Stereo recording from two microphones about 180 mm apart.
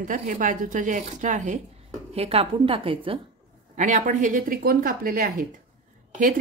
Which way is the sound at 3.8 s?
45° right (ahead or behind).